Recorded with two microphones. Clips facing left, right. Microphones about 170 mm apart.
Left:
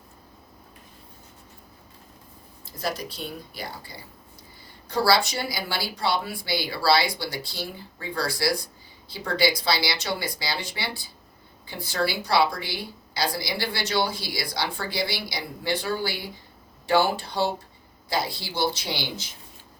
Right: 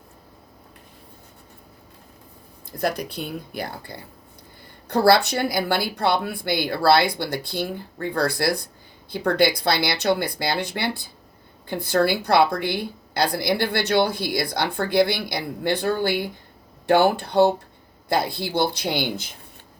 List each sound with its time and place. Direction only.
3.2 s speech: 60° right (ahead or behind)